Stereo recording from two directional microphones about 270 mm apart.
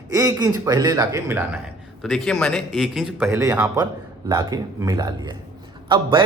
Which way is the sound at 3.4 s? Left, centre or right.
Centre.